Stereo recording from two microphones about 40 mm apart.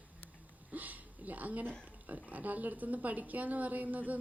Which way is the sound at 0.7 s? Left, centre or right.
Right.